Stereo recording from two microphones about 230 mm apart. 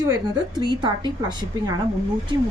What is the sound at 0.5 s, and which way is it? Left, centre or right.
Speech, centre.